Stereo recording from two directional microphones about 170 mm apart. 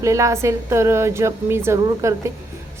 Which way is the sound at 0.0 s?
20° right (ahead or behind).